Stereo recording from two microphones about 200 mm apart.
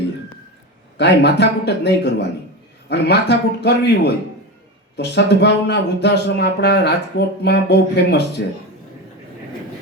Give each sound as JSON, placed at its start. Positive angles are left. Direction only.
{"t": 0.9, "sound": "speech", "side_deg": 60}